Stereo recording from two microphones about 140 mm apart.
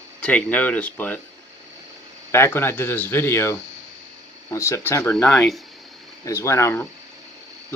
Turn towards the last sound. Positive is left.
turn(degrees=20)  # may be behind; listen again after turning